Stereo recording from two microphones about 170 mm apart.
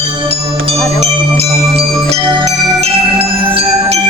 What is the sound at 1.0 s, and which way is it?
Jingle bell, 35° right (ahead or behind).